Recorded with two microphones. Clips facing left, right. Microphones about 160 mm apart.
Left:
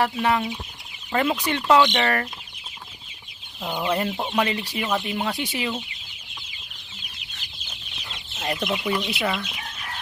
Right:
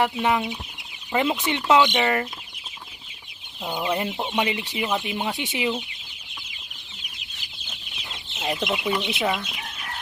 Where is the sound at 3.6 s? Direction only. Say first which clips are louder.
Left 1 dB; 15° right (ahead or behind).